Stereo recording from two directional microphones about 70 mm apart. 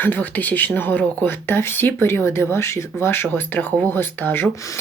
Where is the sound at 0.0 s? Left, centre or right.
Left.